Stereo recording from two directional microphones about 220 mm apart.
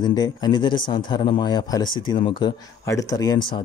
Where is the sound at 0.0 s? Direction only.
20° left (ahead or behind).